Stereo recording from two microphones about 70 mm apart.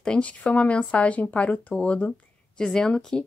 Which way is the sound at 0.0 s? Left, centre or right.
Centre.